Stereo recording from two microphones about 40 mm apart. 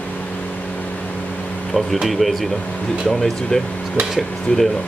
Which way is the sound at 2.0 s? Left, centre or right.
Centre.